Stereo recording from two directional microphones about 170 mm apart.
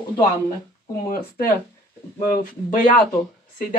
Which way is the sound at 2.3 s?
50° left (ahead or behind).